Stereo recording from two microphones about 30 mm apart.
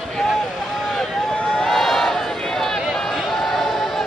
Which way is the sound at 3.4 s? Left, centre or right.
Centre.